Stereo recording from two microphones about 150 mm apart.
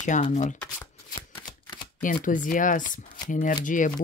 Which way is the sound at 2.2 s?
60° left (ahead or behind).